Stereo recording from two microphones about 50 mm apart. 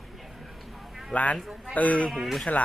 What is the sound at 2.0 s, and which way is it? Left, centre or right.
Speech, centre.